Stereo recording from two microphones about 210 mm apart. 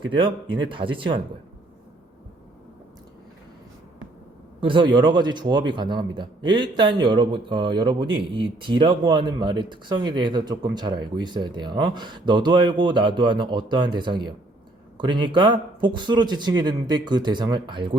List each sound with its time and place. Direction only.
0.0 s speech: 25° right (ahead or behind)
4.6 s speech: 20° right (ahead or behind)